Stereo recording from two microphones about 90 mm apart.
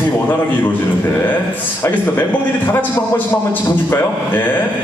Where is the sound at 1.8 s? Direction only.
20° left (ahead or behind).